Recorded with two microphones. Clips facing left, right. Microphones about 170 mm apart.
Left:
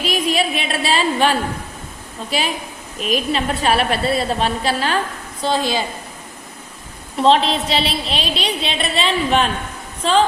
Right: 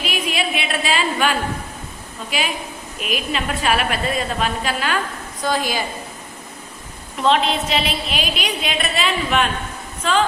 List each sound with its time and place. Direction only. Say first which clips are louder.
0.0 s a sound: left 4 dB; 35° left (ahead or behind)
2.3 s a woman's voice: left 2 dB; 35° left (ahead or behind)
7.2 s a woman's voice: left 3 dB; 35° left (ahead or behind)